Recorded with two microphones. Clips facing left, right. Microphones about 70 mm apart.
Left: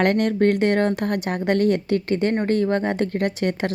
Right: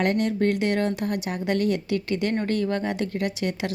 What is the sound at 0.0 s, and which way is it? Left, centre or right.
Speech, left.